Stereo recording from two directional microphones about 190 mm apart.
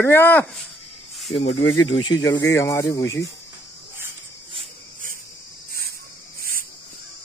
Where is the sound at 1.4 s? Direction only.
90° left.